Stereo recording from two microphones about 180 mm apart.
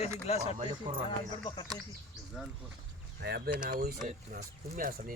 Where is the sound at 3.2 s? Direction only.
60° right (ahead or behind).